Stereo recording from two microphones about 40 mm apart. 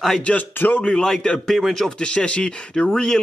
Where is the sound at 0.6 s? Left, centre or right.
Left.